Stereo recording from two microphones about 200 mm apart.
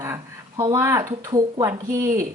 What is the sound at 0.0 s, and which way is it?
A woman's voice, 15° right (ahead or behind).